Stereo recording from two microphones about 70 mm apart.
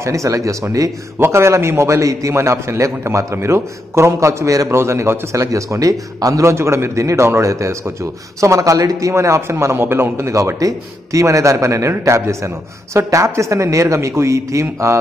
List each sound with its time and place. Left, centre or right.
0.0 s a man's voice: right